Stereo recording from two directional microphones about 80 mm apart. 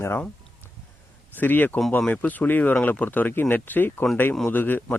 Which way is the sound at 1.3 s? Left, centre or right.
Left.